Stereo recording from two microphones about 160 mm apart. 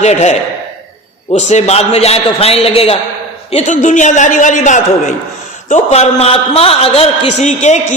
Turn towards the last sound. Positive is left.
turn(degrees=45)  # may be behind; listen again after turning